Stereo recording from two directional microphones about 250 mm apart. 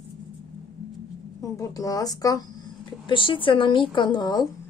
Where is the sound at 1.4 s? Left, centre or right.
Centre.